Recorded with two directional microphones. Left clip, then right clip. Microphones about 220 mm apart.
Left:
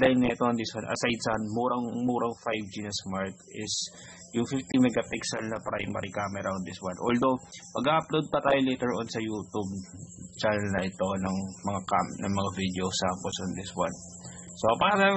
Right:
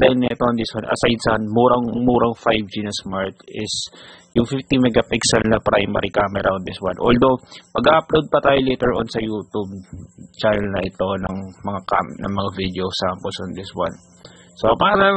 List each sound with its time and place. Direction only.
0.7 s speech: 30° right (ahead or behind)